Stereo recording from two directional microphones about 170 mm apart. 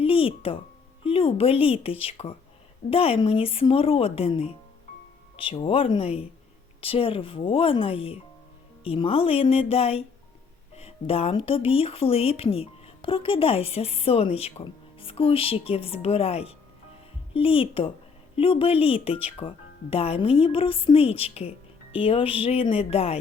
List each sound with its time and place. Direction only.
0.0 s music: 35° left (ahead or behind)
1.0 s speech: 35° left (ahead or behind)